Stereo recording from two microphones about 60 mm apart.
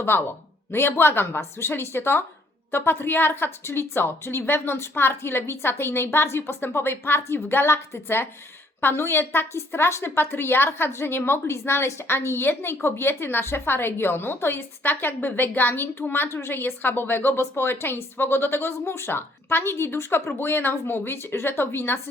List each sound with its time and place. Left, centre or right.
0.1 s a woman's voice: left
7.6 s a woman's voice: left